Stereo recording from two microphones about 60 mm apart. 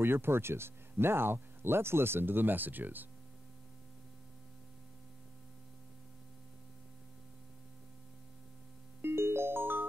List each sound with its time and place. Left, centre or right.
0.0 s speech: right
9.0 s music: right